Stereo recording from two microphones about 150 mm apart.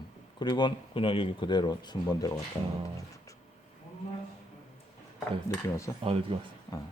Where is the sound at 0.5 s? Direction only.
35° left (ahead or behind).